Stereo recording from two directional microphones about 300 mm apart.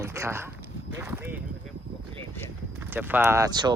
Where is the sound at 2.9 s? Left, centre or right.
Centre.